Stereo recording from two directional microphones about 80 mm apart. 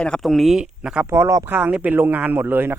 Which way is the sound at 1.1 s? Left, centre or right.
Right.